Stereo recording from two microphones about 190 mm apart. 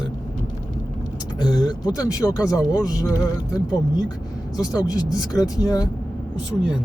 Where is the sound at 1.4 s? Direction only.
20° left (ahead or behind).